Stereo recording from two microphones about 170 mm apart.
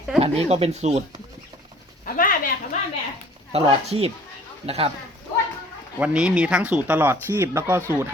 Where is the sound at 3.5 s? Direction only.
35° right (ahead or behind).